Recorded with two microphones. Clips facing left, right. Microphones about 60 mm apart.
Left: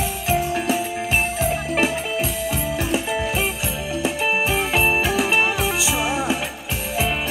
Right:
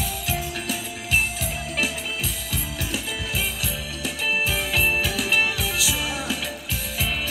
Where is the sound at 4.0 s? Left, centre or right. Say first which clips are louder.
Left 4 dB; left.